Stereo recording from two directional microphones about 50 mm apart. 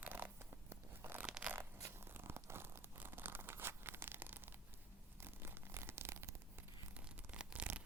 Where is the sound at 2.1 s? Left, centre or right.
Right.